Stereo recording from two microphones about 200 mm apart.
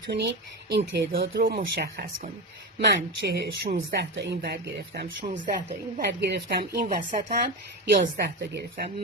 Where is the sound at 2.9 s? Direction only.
55° right (ahead or behind).